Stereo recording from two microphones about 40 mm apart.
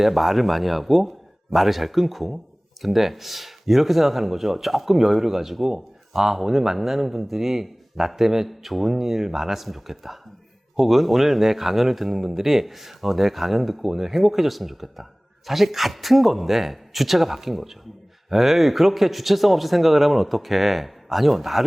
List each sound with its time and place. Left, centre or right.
0.0 s speech: centre